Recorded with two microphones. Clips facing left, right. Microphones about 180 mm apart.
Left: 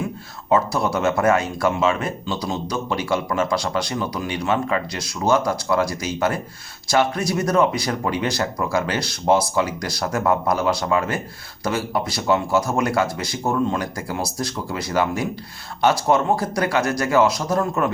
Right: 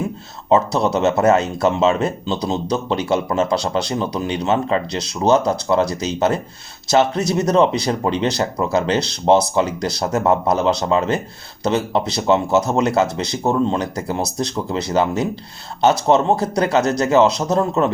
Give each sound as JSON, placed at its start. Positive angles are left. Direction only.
{"t": 0.5, "sound": "speech", "side_deg": -20}